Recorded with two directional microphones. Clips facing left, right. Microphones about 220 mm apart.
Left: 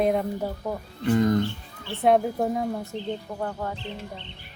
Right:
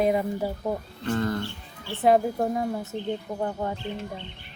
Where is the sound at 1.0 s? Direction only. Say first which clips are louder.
Left 7 dB; 15° left (ahead or behind).